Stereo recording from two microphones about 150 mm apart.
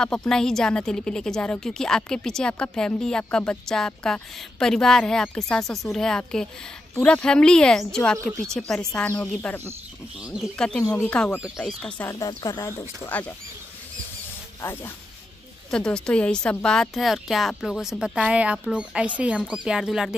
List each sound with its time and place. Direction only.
0.0 s speech: 5° left (ahead or behind)
10.2 s speech: 5° right (ahead or behind)
10.6 s speech: 5° left (ahead or behind)
12.1 s speech: 25° left (ahead or behind)
15.7 s speech: 5° left (ahead or behind)